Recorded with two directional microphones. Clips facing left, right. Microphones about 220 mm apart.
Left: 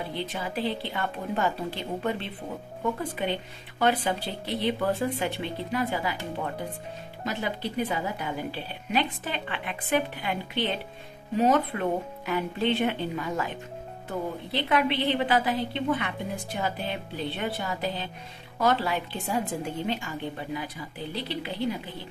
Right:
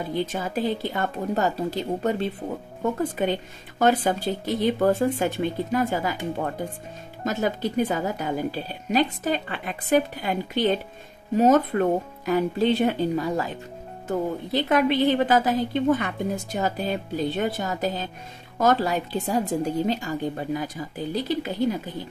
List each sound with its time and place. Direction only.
0.1 s a woman's voice: 45° right (ahead or behind)
7.2 s a woman's voice: 45° right (ahead or behind)